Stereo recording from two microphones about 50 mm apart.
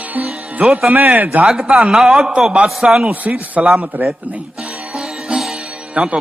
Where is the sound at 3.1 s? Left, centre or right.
Right.